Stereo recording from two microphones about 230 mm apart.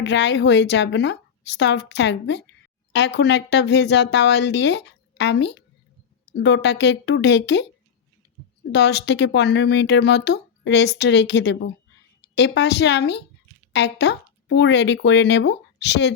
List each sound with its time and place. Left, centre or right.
0.0 s speech: left
8.7 s speech: left